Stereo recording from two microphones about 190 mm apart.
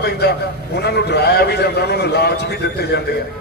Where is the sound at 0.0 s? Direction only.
60° left (ahead or behind).